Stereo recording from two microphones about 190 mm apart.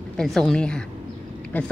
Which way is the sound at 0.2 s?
5° left (ahead or behind).